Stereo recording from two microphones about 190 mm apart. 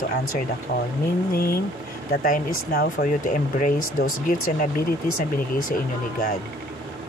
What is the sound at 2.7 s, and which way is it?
Speech, 45° left (ahead or behind).